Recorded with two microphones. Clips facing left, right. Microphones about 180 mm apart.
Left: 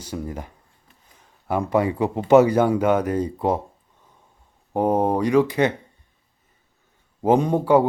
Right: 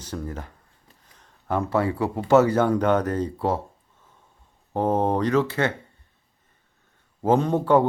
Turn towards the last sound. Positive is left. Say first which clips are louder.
# left 2 dB
turn(degrees=10)  # may be behind; listen again after turning